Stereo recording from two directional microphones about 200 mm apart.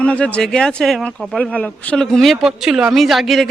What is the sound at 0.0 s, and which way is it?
Speech, 5° left (ahead or behind).